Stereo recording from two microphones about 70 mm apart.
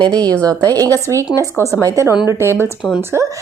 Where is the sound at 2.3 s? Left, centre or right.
Right.